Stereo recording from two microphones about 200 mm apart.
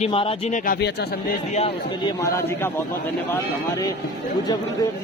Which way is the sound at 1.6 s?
25° left (ahead or behind).